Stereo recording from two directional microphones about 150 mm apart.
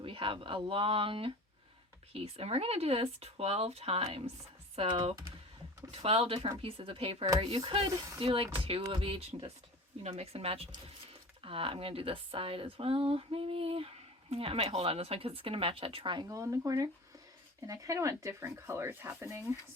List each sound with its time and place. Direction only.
0.0 s speech: 35° right (ahead or behind); by 19.5 s 15° right (ahead or behind)